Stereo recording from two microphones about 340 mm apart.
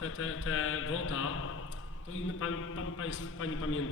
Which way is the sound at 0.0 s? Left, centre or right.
Left.